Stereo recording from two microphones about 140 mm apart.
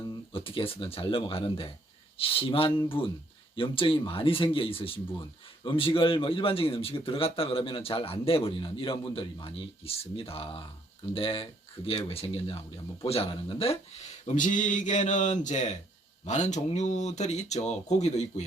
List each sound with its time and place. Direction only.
0.3 s a man's voice: 40° left (ahead or behind)